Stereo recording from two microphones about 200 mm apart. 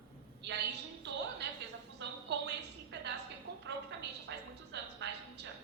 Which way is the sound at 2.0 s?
60° right (ahead or behind).